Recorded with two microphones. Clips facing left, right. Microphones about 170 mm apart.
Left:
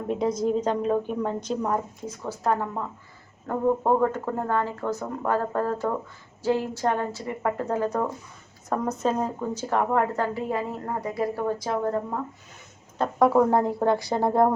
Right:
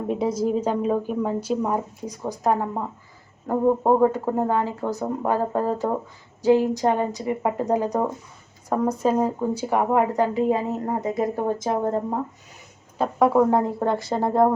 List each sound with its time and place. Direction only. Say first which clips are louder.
0.1 s speech: right 1 dB; 5° right (ahead or behind); by 12.2 s 25° right (ahead or behind)
13.0 s speech: right 1 dB; 5° right (ahead or behind)